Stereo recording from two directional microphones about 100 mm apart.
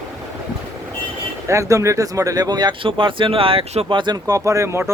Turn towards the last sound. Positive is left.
turn(degrees=-30)  # may be behind; listen again after turning